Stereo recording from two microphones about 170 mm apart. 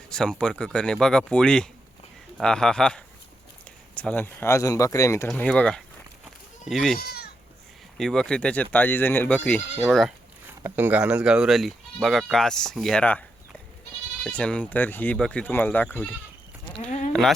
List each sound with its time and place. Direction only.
0.1 s speech: 5° left (ahead or behind)
5.3 s speech: 5° left (ahead or behind)
7.1 s goat: 70° left (ahead or behind)
7.9 s speech: centre (ahead or behind)
10.6 s speech: 10° right (ahead or behind); by 13.2 s 5° left (ahead or behind)
14.3 s speech: 5° left (ahead or behind)